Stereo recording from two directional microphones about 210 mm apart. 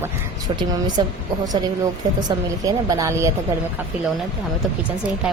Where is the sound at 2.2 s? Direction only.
15° right (ahead or behind).